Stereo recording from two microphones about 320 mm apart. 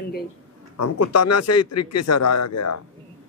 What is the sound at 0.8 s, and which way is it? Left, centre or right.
A man's voice, left.